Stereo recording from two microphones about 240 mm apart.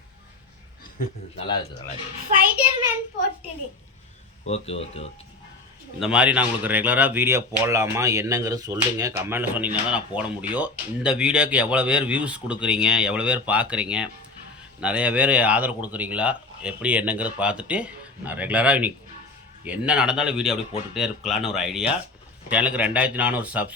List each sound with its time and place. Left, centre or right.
4.4 s speech: left
6.0 s speech: centre